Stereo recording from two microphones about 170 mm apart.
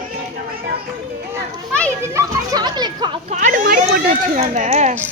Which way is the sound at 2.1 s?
25° right (ahead or behind).